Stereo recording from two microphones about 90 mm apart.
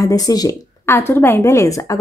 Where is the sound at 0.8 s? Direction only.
25° left (ahead or behind).